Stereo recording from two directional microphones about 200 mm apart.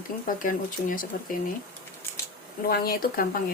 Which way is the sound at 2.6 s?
50° left (ahead or behind).